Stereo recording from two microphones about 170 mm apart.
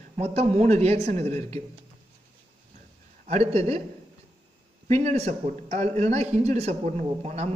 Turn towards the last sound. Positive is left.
turn(degrees=-40)  # may be behind; listen again after turning